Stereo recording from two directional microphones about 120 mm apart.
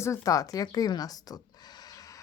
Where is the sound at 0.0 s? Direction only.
25° left (ahead or behind).